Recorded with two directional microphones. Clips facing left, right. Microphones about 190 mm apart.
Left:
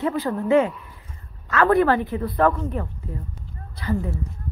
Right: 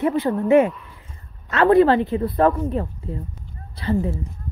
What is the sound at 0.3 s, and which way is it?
Speech, 25° right (ahead or behind).